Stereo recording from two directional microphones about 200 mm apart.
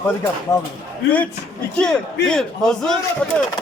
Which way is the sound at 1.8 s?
5° left (ahead or behind).